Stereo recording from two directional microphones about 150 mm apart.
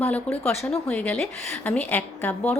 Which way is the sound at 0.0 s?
10° left (ahead or behind).